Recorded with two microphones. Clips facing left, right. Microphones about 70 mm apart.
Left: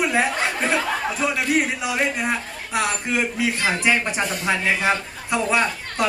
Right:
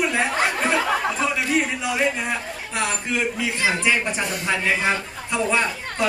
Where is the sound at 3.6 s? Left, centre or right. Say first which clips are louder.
Right 1 dB; centre.